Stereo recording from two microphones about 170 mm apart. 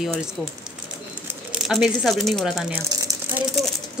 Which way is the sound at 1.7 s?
Centre (ahead or behind).